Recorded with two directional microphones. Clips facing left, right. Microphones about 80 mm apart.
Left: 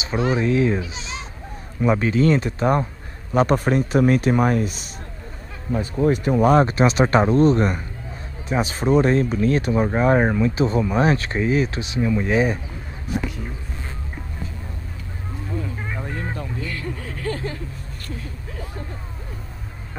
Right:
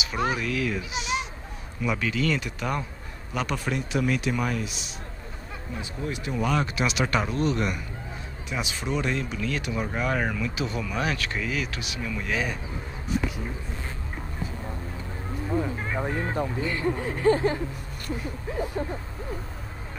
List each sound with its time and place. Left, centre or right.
0.3 s speech: left
16.0 s speech: centre